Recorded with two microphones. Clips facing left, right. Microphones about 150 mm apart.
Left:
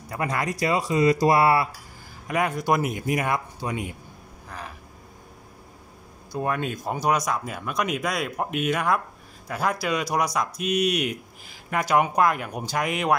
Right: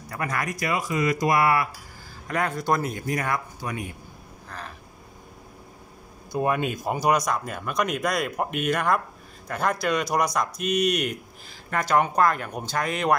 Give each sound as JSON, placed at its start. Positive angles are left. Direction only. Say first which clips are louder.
{"t": 0.1, "sound": "speech", "louder": "left 2 dB", "side_deg": 20}
{"t": 2.2, "sound": "speech", "louder": "left 2 dB", "side_deg": 15}
{"t": 4.5, "sound": "crow", "louder": "left 1 dB", "side_deg": 10}
{"t": 6.3, "sound": "speech", "louder": "right 2 dB", "side_deg": -10}